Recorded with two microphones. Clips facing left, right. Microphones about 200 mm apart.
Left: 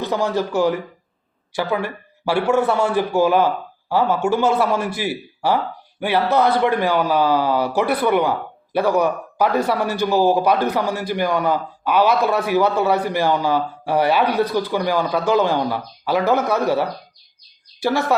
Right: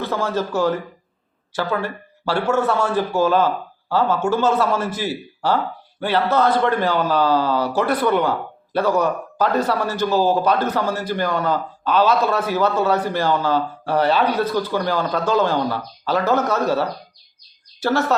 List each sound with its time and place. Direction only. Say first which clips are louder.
0.0 s a man's voice: left 2 dB; 15° left (ahead or behind)